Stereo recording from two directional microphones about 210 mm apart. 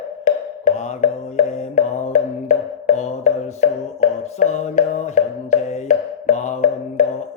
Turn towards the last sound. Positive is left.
turn(degrees=35)  # may be behind; listen again after turning